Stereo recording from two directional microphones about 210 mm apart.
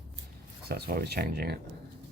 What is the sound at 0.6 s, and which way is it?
Speech, 50° right (ahead or behind).